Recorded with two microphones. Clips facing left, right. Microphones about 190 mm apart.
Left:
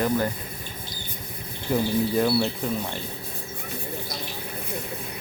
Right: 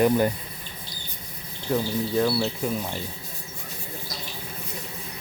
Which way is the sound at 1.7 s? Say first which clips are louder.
Left 2 dB; 5° left (ahead or behind).